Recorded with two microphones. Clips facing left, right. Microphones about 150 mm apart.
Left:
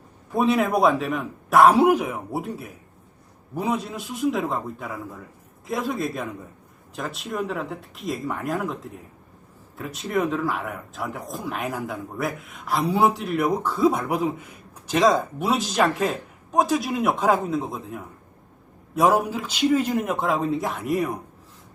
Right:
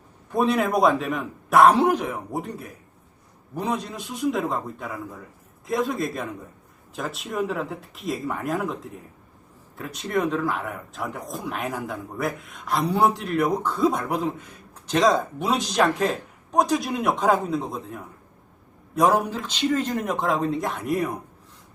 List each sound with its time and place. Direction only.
0.3 s speech: centre (ahead or behind)